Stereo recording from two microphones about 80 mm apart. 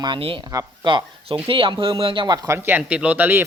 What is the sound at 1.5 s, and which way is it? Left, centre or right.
Speech, right.